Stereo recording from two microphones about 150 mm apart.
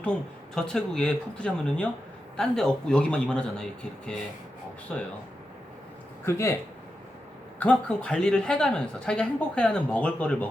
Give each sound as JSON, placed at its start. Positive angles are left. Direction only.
{"t": 0.0, "sound": "speech", "side_deg": 5}
{"t": 6.2, "sound": "speech", "side_deg": 20}
{"t": 7.6, "sound": "speech", "side_deg": 10}